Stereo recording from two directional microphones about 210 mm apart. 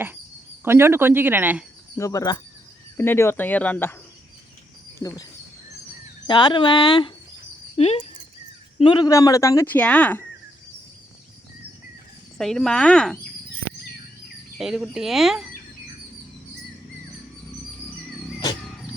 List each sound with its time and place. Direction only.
0.6 s speech: 10° right (ahead or behind)
2.0 s speech: 15° left (ahead or behind)
4.9 s speech: 15° left (ahead or behind)
12.4 s speech: centre (ahead or behind)
14.6 s speech: centre (ahead or behind)